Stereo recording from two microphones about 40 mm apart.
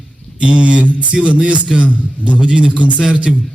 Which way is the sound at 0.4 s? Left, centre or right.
Right.